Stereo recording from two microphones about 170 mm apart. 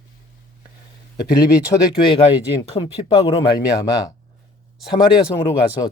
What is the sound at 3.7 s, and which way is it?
Speech, 20° left (ahead or behind).